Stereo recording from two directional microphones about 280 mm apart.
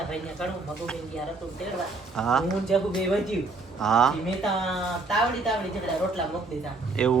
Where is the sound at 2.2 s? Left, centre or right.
Centre.